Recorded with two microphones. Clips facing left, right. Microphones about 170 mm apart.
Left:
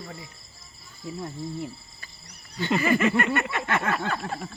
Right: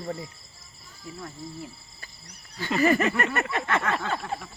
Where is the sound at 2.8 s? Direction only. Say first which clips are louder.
Right 2 dB; 40° right (ahead or behind).